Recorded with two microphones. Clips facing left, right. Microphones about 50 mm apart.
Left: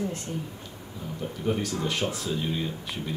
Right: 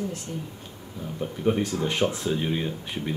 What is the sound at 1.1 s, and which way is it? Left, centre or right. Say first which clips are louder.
Speech: right 4 dB; right.